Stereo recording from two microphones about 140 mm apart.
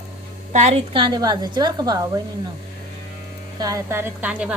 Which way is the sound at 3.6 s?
20° right (ahead or behind).